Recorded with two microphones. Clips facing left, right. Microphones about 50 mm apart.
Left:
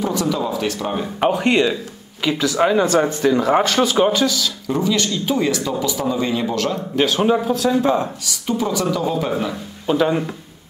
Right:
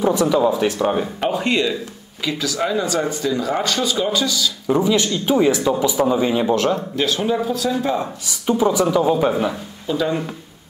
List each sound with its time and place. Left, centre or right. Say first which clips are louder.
0.0 s speech: right 5 dB; centre
1.3 s speech: left 2 dB; left
4.6 s speech: right 3 dB; centre
7.0 s speech: left 7 dB; left
7.4 s speech: left 3 dB; centre
8.3 s speech: right 6 dB; centre
9.8 s speech: left 4 dB; left